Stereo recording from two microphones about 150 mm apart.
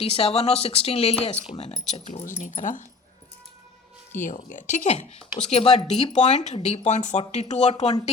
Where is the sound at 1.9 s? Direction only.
55° left (ahead or behind).